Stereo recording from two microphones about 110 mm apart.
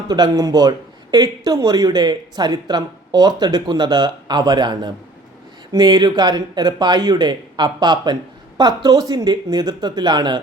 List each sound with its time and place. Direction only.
0.1 s a man's voice: 35° right (ahead or behind)